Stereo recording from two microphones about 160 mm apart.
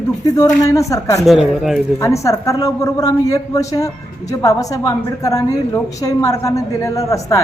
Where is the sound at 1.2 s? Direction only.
Centre (ahead or behind).